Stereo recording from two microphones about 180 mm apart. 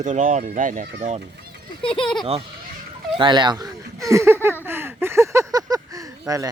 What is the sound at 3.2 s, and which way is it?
Speech, 25° right (ahead or behind).